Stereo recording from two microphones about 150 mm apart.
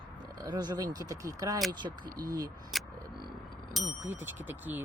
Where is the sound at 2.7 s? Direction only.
Centre (ahead or behind).